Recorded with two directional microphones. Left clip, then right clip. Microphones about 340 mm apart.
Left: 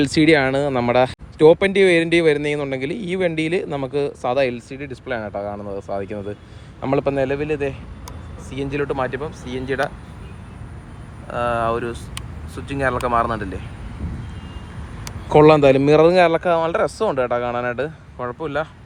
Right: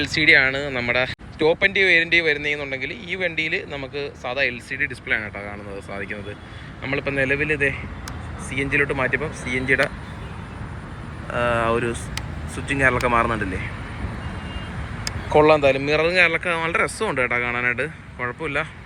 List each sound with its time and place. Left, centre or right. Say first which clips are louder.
0.0 s speech: even; centre
11.3 s speech: even; centre
15.3 s speech: left 4 dB; left